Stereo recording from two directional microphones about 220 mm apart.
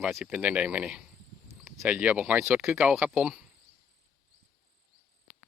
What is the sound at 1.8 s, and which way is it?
Speech, 5° right (ahead or behind).